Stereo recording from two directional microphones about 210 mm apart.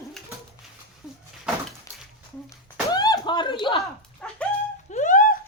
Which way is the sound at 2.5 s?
15° left (ahead or behind).